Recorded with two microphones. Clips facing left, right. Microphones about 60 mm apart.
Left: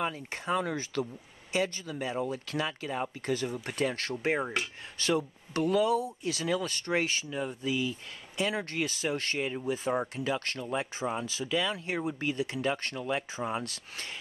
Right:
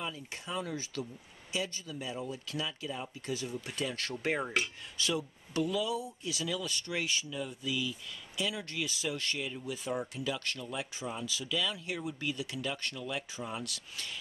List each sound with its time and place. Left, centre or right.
0.0 s speech: left
4.1 s cutlery: left
4.9 s speech: left